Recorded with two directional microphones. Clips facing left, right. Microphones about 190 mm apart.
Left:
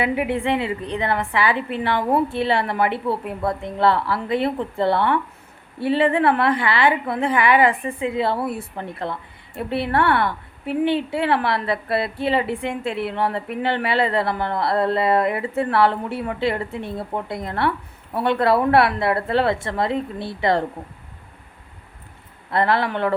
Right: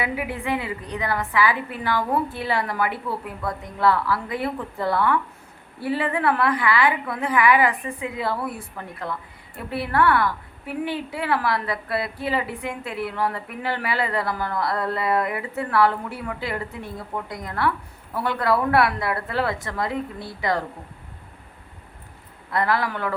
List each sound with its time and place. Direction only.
0.0 s a woman's voice: 25° left (ahead or behind)
22.5 s a woman's voice: 25° left (ahead or behind)